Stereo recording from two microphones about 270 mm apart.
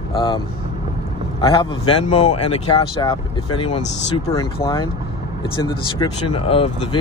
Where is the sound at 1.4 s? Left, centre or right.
Centre.